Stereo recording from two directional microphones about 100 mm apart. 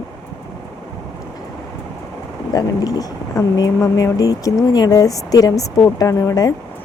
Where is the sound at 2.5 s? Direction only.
35° left (ahead or behind).